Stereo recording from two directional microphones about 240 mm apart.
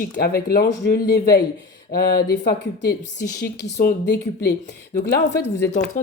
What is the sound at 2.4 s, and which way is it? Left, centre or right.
Speech, left.